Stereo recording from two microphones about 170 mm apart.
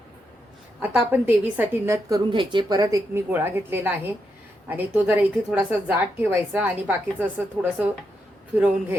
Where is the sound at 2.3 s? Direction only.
30° right (ahead or behind).